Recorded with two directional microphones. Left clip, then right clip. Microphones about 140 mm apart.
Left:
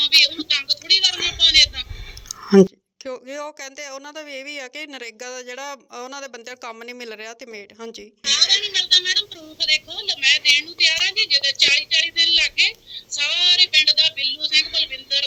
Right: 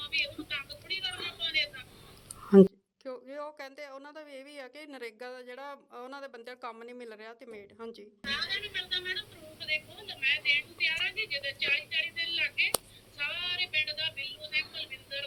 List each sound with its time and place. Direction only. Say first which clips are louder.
0.0 s a sound: left 18 dB; 80° left
3.0 s speech: left 10 dB; 35° left (ahead or behind)
8.2 s a woman's voice: left 16 dB; 60° left (ahead or behind)